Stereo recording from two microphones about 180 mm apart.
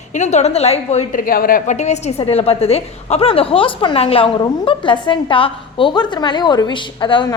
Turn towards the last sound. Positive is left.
turn(degrees=25)  # may be behind; listen again after turning